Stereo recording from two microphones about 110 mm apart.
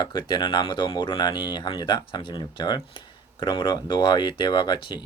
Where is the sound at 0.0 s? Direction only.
40° left (ahead or behind).